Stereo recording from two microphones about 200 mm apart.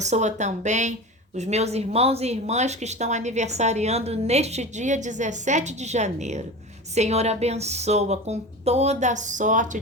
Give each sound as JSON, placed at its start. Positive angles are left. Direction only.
{"t": 0.0, "sound": "speech", "side_deg": -35}